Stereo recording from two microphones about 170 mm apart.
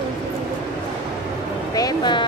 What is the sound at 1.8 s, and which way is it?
Speech, 25° left (ahead or behind).